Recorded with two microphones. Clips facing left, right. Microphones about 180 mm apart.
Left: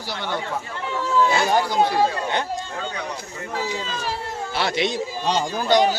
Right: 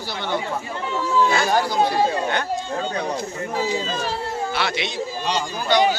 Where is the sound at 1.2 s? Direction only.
15° left (ahead or behind).